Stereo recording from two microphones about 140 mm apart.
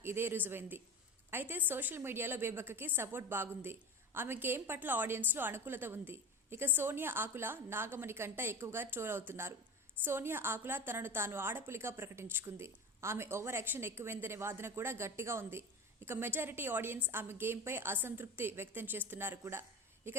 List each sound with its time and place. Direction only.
0.0 s a woman's voice: 15° right (ahead or behind)